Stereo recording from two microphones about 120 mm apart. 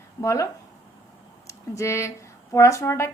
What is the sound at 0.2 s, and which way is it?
Speech, 25° left (ahead or behind).